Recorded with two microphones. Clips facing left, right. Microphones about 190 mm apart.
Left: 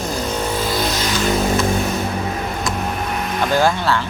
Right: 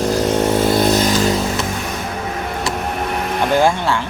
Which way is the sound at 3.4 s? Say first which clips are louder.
Right 2 dB; 20° right (ahead or behind).